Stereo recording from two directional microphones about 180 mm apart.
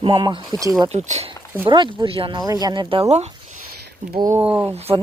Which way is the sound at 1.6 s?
25° right (ahead or behind).